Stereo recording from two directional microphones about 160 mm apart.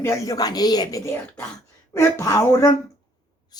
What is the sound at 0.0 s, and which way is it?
A woman's voice, 20° left (ahead or behind).